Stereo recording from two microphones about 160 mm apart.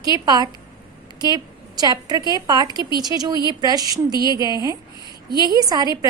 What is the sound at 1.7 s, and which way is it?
Speech, 25° right (ahead or behind).